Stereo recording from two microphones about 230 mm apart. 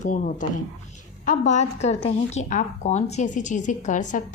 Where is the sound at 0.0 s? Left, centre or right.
Left.